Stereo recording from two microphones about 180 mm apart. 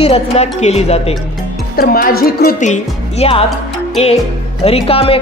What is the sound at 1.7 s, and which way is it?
A woman's voice, 55° left (ahead or behind).